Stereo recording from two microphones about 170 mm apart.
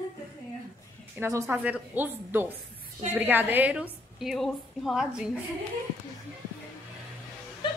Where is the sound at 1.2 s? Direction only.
15° right (ahead or behind).